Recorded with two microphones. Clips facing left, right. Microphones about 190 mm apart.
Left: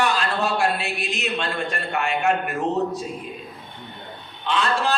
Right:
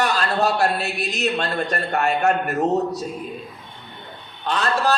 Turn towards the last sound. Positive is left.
turn(degrees=-40)  # may be behind; listen again after turning